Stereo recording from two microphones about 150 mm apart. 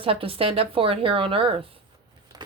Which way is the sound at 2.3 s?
25° right (ahead or behind).